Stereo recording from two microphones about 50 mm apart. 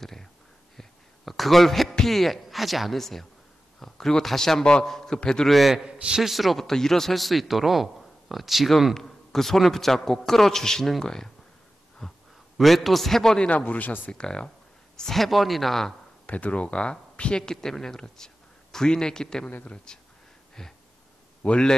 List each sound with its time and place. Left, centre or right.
0.0 s a sound: centre
3.8 s a man's voice: centre
5.5 s a man's voice: centre
5.9 s a man's voice: centre
6.3 s a man's voice: centre
12.0 s a sound: centre
12.5 s a man's voice: centre
13.5 s speech: left
14.1 s a man's voice: centre
15.0 s a man's voice: centre
16.3 s a man's voice: left; by 20.7 s centre
21.4 s a man's voice: left